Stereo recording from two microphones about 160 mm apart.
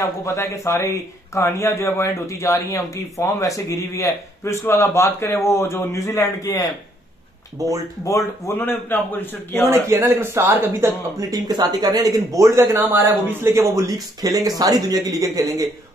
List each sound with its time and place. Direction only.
0.0 s a man's voice: 20° left (ahead or behind)
7.5 s speech: 20° right (ahead or behind)
8.0 s a man's voice: 20° left (ahead or behind)
9.8 s speech: 15° right (ahead or behind)